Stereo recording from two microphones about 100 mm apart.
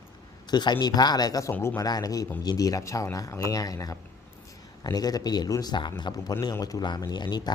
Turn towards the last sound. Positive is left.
turn(degrees=45)  # may be behind; listen again after turning